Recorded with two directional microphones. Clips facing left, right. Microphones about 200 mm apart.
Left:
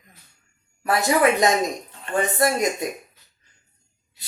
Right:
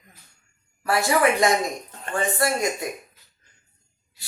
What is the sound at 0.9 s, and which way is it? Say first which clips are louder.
Speech: left 1 dB; 20° left (ahead or behind).